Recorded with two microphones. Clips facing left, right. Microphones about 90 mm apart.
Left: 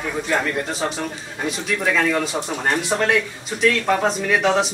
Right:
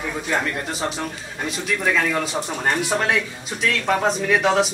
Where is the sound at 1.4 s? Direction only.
Centre (ahead or behind).